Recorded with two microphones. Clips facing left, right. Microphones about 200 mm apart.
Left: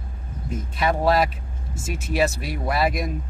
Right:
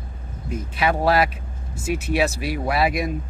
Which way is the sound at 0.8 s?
Centre (ahead or behind).